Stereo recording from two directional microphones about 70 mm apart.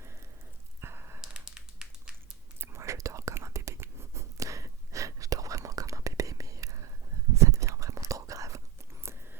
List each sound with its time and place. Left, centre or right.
0.8 s a sound: right
1.2 s dog: centre
2.6 s whispering: right